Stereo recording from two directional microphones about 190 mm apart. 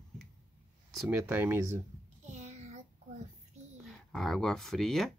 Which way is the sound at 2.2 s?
35° right (ahead or behind).